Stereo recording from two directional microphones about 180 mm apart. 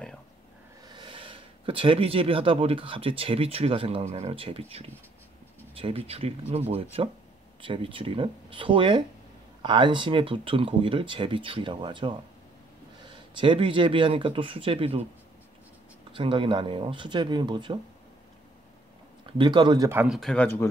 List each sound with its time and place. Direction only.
0.8 s speech: 25° right (ahead or behind)
16.1 s speech: 30° right (ahead or behind)
19.3 s speech: 25° right (ahead or behind)
19.9 s speech: 10° right (ahead or behind)
20.2 s speech: 5° left (ahead or behind)